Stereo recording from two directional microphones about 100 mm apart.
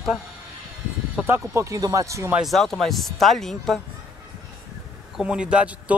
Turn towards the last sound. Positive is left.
turn(degrees=-10)  # may be behind; listen again after turning